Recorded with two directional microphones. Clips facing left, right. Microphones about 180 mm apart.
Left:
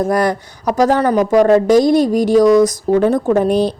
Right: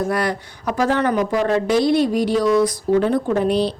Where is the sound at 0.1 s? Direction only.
45° left (ahead or behind).